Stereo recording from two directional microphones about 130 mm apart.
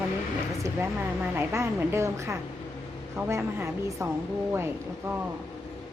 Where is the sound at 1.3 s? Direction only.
20° right (ahead or behind).